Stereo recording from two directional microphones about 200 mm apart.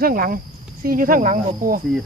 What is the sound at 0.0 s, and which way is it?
Speech, 45° right (ahead or behind).